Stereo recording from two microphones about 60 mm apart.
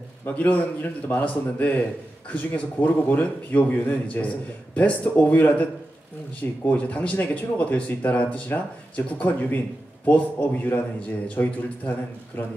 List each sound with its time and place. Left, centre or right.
0.4 s speech: left